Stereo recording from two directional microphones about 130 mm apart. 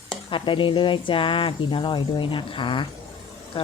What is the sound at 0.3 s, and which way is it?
A woman's voice, 40° left (ahead or behind).